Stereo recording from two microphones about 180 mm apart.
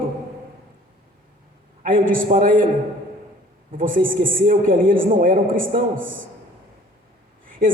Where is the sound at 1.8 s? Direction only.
50° right (ahead or behind).